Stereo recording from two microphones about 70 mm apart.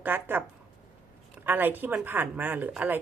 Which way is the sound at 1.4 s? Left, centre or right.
Right.